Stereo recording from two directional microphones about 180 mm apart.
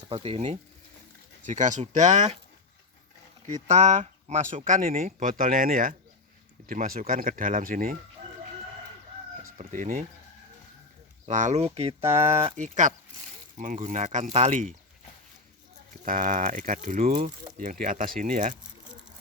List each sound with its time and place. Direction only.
0.1 s speech: 35° right (ahead or behind)
3.4 s speech: 40° right (ahead or behind)
9.6 s speech: 45° right (ahead or behind)
11.3 s speech: 40° right (ahead or behind)
16.0 s speech: 50° right (ahead or behind)